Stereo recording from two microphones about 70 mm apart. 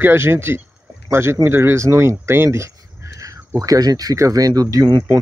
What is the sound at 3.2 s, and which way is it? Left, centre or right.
Speech, right.